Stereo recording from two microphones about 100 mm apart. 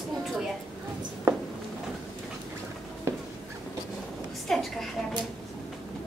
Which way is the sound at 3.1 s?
25° right (ahead or behind).